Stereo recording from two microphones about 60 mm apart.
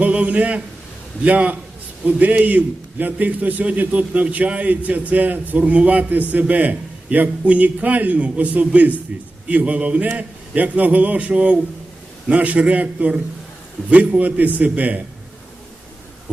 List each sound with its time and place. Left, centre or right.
0.0 s a man's voice: right